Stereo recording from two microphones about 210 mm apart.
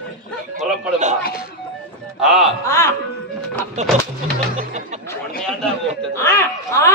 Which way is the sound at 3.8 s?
35° right (ahead or behind).